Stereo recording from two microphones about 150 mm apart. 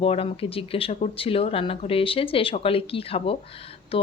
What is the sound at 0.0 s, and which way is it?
Speech, 40° left (ahead or behind).